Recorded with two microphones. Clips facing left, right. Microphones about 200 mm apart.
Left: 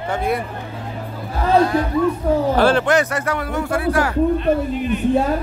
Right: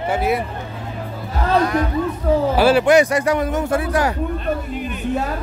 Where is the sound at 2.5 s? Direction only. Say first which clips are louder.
Right 5 dB; 10° right (ahead or behind).